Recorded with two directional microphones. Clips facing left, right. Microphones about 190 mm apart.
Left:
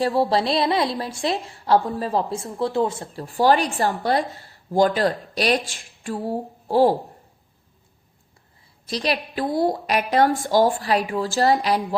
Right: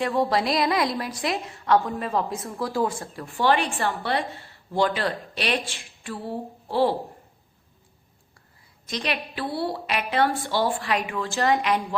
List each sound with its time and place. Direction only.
0.0 s a woman's voice: 35° left (ahead or behind)
3.2 s a woman's voice: 35° left (ahead or behind)
8.9 s a woman's voice: 35° left (ahead or behind)